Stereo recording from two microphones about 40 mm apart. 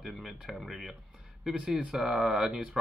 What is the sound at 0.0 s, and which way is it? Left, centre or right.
Speech, centre.